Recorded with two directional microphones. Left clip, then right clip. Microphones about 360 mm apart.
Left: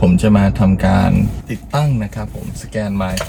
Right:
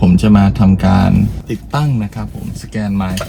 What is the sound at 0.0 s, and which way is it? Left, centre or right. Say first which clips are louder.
Speech: right 1 dB; centre.